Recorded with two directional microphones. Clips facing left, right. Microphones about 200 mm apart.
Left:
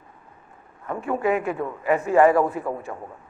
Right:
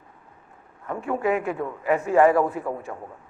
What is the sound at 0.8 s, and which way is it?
A man's voice, 30° left (ahead or behind).